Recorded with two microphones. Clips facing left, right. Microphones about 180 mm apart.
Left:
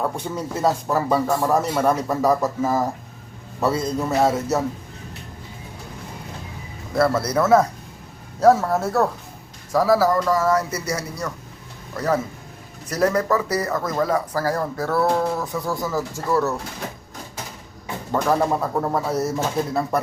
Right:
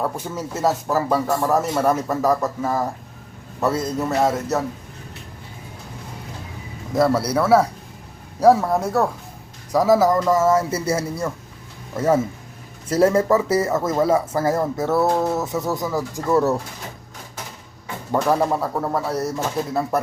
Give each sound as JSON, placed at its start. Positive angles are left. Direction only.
{"t": 0.0, "sound": "a man's voice", "side_deg": -5}
{"t": 6.9, "sound": "speech", "side_deg": -15}
{"t": 18.1, "sound": "a man's voice", "side_deg": -5}